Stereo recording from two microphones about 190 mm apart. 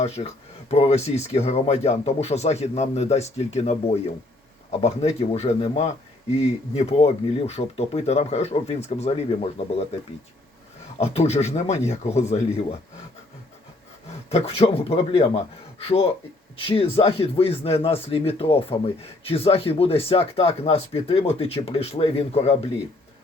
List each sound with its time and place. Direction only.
0.2 s speech: 35° left (ahead or behind)
11.0 s speech: 35° left (ahead or behind)
14.3 s speech: 30° left (ahead or behind)
16.6 s speech: 30° left (ahead or behind)